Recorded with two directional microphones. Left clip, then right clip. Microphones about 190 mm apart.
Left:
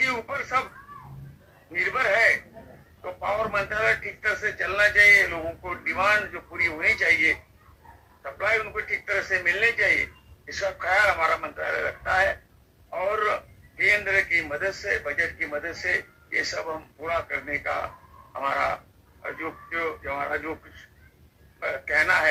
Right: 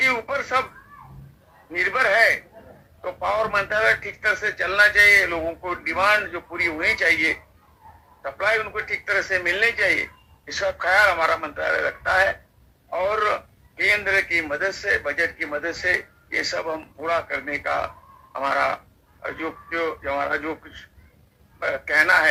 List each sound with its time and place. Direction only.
0.0 s speech: 25° right (ahead or behind)
1.7 s a man's voice: 25° right (ahead or behind)
21.6 s a man's voice: 25° right (ahead or behind)